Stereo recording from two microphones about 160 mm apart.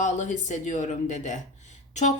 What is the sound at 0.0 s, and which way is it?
Speech, 45° left (ahead or behind).